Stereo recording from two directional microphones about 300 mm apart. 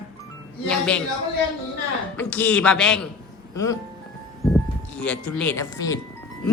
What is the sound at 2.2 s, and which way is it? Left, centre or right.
Speech, centre.